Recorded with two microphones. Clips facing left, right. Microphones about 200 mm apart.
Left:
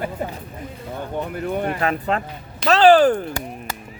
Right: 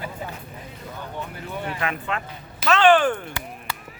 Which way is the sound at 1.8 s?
40° left (ahead or behind).